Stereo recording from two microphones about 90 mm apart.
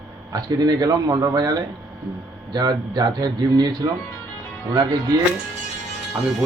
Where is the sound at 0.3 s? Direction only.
50° right (ahead or behind).